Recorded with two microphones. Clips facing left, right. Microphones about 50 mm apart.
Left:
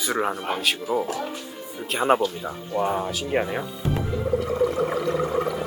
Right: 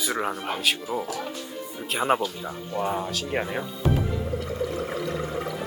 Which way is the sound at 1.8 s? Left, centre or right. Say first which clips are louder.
Left 3 dB; centre.